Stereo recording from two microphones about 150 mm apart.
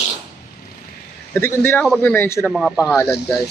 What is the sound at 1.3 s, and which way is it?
Speech, 15° left (ahead or behind).